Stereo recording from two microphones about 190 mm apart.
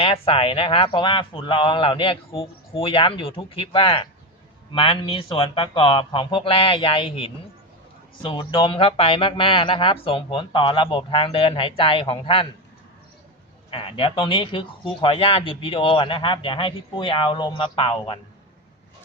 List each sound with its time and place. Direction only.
0.0 s speech: 30° left (ahead or behind)
13.7 s speech: 30° left (ahead or behind)